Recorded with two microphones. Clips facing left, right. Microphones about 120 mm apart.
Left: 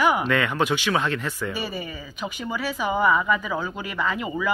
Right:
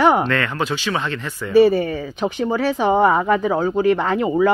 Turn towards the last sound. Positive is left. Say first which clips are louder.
# right 8 dB
turn(degrees=-40)  # may be behind; listen again after turning